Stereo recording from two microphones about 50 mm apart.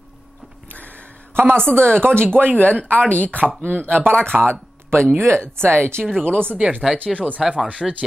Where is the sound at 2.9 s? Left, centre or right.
Left.